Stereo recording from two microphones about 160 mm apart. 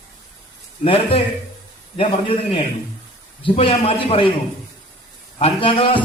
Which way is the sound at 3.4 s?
35° left (ahead or behind).